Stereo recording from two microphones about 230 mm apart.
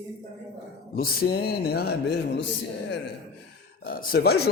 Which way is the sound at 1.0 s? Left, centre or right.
Left.